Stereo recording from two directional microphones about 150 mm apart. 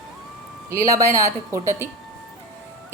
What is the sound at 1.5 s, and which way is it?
Speech, 20° right (ahead or behind).